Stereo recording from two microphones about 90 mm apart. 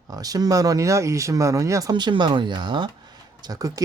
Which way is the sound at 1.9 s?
60° right (ahead or behind).